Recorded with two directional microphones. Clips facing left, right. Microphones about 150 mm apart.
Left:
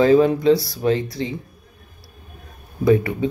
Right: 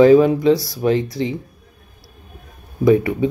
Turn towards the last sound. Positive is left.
turn(degrees=-15)  # may be behind; listen again after turning